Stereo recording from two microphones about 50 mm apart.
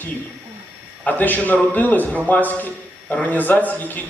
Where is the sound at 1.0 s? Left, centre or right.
Left.